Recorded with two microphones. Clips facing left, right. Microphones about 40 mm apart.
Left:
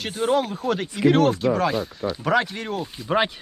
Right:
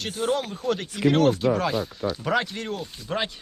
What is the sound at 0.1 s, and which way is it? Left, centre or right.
Speech, left.